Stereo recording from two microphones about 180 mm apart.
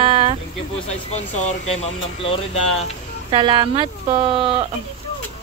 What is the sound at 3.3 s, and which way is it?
Speech, 25° right (ahead or behind).